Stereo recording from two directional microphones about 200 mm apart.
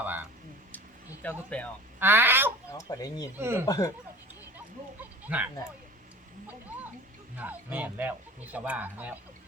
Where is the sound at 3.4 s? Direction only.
10° right (ahead or behind).